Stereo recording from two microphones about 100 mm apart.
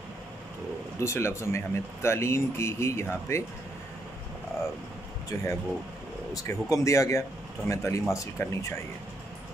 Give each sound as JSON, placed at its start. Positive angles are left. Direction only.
{"t": 0.9, "sound": "speech", "side_deg": 25}
{"t": 5.3, "sound": "a man's voice", "side_deg": 30}